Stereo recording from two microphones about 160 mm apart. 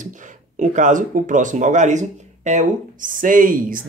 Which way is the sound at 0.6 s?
50° right (ahead or behind).